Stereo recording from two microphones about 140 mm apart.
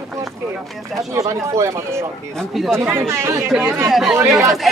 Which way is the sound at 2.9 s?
20° right (ahead or behind).